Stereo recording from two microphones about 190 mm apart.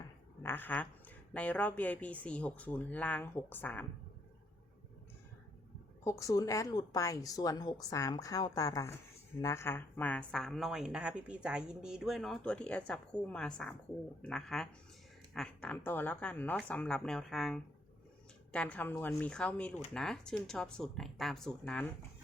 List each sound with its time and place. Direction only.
0.4 s a woman's voice: 10° left (ahead or behind)
6.1 s a woman's voice: 15° left (ahead or behind)